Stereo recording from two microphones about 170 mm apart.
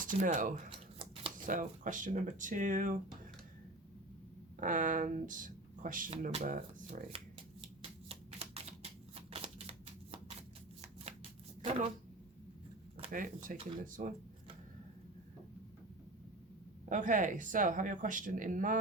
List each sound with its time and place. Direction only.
0.0 s speech: 50° right (ahead or behind)
0.7 s shuffling cards: 30° right (ahead or behind)
1.5 s speech: 50° right (ahead or behind)
4.6 s speech: 50° right (ahead or behind)
7.8 s typewriter: 35° right (ahead or behind)
9.3 s shuffling cards: 35° right (ahead or behind)
13.1 s speech: 55° right (ahead or behind)
16.9 s speech: 50° right (ahead or behind)